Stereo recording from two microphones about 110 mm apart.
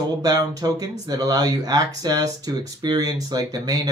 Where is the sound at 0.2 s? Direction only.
35° right (ahead or behind).